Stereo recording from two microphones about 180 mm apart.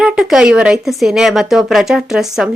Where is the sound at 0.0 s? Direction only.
5° right (ahead or behind).